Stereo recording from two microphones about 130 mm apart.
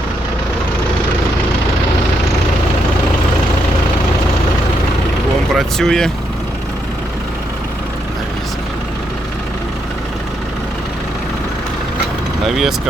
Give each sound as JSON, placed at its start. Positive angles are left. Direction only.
{"t": 5.5, "sound": "speech", "side_deg": 5}
{"t": 12.5, "sound": "speech", "side_deg": 0}